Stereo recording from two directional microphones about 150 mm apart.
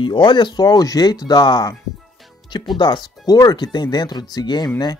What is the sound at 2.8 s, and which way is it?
Speech, 25° left (ahead or behind).